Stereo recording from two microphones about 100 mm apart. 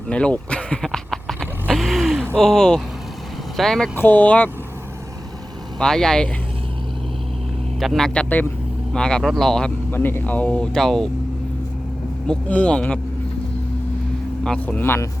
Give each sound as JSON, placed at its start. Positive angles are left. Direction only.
{"t": 0.1, "sound": "a sound", "side_deg": 10}
{"t": 1.7, "sound": "vehicle", "side_deg": 0}
{"t": 2.3, "sound": "speech", "side_deg": 5}
{"t": 3.9, "sound": "speech", "side_deg": 20}
{"t": 5.8, "sound": "speech", "side_deg": 5}
{"t": 7.8, "sound": "speech", "side_deg": 0}
{"t": 9.9, "sound": "speech", "side_deg": 20}
{"t": 12.3, "sound": "speech", "side_deg": 10}
{"t": 14.4, "sound": "speech", "side_deg": 5}
{"t": 14.8, "sound": "speech", "side_deg": 20}